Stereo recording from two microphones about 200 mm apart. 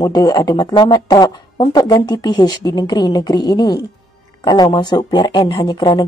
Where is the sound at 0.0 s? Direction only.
20° left (ahead or behind).